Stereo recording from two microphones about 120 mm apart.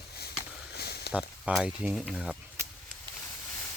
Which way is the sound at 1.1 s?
10° right (ahead or behind).